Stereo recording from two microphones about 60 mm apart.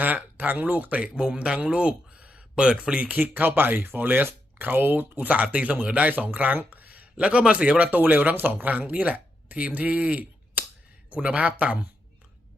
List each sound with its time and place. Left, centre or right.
0.0 s speech: right
1.0 s speech: centre; by 5.3 s right
5.3 s speech: right